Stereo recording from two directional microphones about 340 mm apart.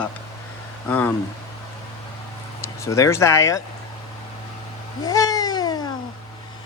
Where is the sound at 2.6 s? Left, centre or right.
Centre.